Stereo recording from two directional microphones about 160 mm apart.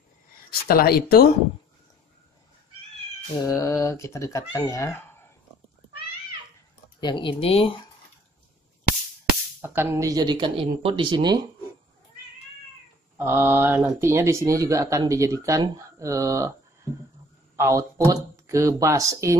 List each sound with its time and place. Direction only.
0.5 s speech: 70° left (ahead or behind)
3.4 s speech: 20° left (ahead or behind)
7.0 s speech: 30° left (ahead or behind)
9.6 s speech: 15° right (ahead or behind)
13.2 s speech: 15° right (ahead or behind)
17.6 s speech: 20° right (ahead or behind)